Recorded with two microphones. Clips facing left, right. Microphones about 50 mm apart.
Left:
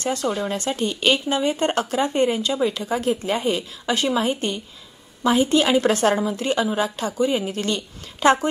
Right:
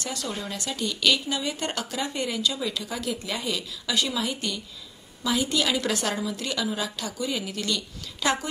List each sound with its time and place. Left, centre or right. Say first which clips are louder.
0.0 s speech: left 9 dB; left